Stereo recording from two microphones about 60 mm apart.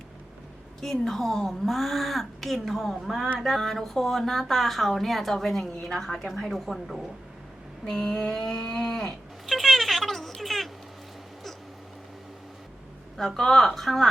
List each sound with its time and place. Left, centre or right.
0.8 s speech: centre
7.9 s a sound: centre
13.1 s speech: centre